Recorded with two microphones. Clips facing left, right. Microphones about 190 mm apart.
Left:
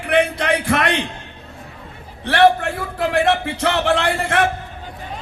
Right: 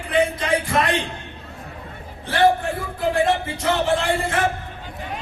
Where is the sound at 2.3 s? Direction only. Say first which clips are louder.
Left 3 dB; 70° left (ahead or behind).